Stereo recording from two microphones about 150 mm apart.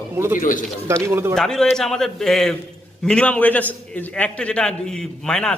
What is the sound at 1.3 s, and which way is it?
A man's voice, 5° left (ahead or behind).